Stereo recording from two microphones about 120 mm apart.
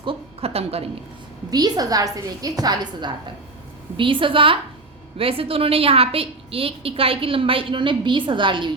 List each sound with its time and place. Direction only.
0.0 s a sound: 50° right (ahead or behind)
1.5 s a woman's voice: 35° right (ahead or behind)
3.9 s a woman's voice: 45° right (ahead or behind)